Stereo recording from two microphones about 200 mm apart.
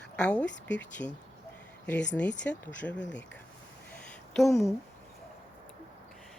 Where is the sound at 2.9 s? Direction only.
65° left (ahead or behind).